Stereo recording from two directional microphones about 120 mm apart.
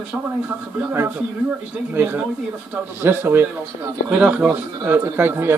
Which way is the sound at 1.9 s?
15° right (ahead or behind).